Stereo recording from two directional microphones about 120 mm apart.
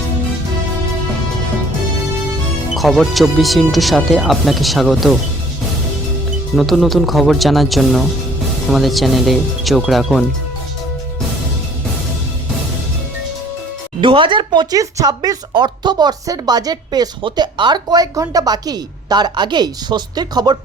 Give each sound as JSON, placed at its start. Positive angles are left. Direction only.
{"t": 2.7, "sound": "speech", "side_deg": 0}
{"t": 6.6, "sound": "speech", "side_deg": 0}
{"t": 14.0, "sound": "speech", "side_deg": -45}
{"t": 14.8, "sound": "speech", "side_deg": -30}